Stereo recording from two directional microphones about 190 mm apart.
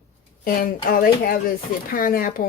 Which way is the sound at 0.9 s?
50° left (ahead or behind).